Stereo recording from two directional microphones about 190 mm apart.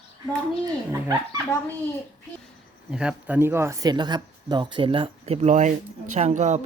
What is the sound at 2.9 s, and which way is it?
Speech, 5° right (ahead or behind).